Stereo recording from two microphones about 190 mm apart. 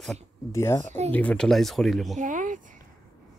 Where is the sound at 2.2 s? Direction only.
45° right (ahead or behind).